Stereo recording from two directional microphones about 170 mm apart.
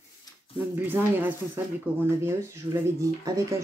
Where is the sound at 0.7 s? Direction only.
10° right (ahead or behind).